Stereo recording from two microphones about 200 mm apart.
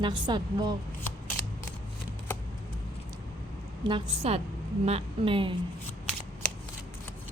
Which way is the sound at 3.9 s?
30° right (ahead or behind).